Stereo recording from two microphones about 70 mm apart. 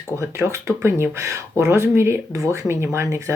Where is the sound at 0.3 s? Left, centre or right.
Right.